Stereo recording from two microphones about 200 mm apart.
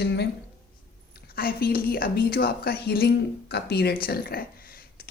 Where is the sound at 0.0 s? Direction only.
55° left (ahead or behind).